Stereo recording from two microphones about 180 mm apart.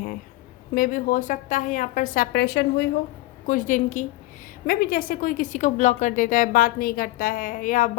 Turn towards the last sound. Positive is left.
turn(degrees=45)  # may be behind; listen again after turning